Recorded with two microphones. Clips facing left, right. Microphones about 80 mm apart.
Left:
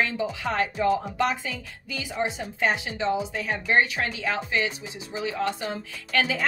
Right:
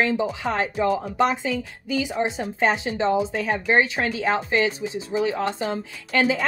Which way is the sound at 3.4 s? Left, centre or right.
Right.